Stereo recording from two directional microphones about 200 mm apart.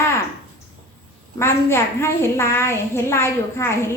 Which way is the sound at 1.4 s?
10° left (ahead or behind).